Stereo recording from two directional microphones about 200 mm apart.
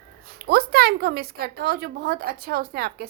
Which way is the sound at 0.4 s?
50° right (ahead or behind).